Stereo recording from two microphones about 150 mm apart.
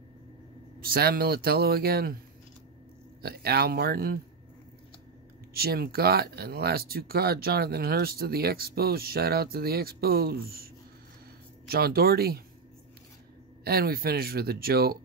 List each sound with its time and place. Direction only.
0.7 s speech: 85° right
3.2 s speech: 90° right
5.5 s speech: 90° right
13.7 s speech: 90° right